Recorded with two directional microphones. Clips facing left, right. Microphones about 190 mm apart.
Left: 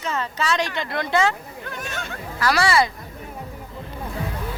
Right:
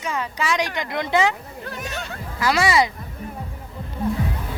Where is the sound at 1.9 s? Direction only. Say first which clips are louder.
Even; 35° right (ahead or behind).